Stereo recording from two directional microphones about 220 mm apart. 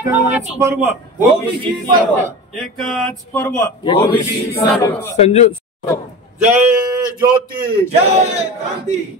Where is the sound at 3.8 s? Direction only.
20° left (ahead or behind).